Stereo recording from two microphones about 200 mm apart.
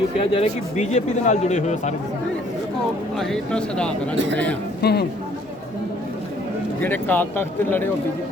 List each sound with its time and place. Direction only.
0.2 s speech: 35° left (ahead or behind)
3.2 s speech: centre (ahead or behind)
4.8 s a man's voice: 55° left (ahead or behind)
6.8 s speech: 10° left (ahead or behind)